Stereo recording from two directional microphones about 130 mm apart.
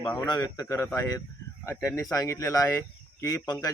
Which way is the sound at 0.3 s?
30° left (ahead or behind).